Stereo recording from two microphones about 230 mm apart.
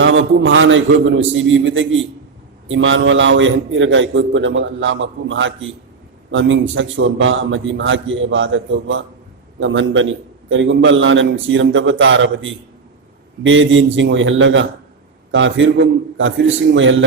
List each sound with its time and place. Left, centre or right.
0.0 s a man's voice: right